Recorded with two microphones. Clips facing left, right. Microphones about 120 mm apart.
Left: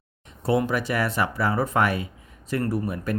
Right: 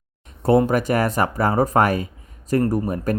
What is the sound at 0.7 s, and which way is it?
Speech, 45° right (ahead or behind).